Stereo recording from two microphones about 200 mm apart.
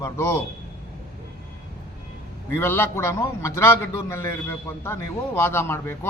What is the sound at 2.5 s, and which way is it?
A man's voice, 10° left (ahead or behind).